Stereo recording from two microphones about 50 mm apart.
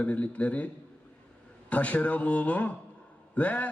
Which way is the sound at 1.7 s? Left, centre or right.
Left.